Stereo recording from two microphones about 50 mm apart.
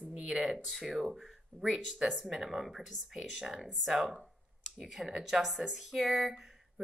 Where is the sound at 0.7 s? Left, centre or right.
Centre.